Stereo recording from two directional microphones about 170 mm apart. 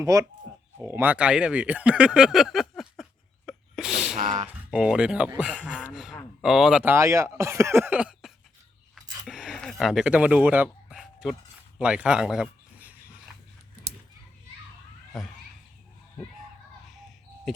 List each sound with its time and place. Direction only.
0.0 s speech: 20° right (ahead or behind); by 4.2 s centre (ahead or behind)
4.2 s speech: 50° right (ahead or behind)
4.7 s speech: 5° right (ahead or behind)
9.2 s a sound: centre (ahead or behind)
11.8 s speech: 5° right (ahead or behind)
16.8 s a sound: centre (ahead or behind)